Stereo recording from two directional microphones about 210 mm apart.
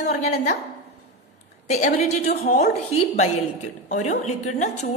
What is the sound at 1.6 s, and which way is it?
A woman's voice, 30° left (ahead or behind).